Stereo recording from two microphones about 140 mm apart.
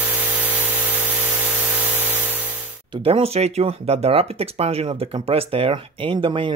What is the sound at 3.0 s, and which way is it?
Speech, 45° right (ahead or behind).